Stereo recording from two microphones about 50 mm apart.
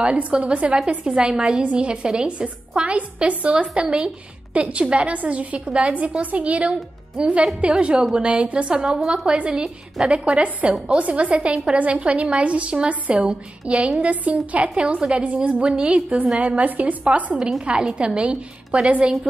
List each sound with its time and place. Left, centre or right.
0.0 s a woman's voice: right
16.3 s a woman's voice: right
17.4 s a woman's voice: centre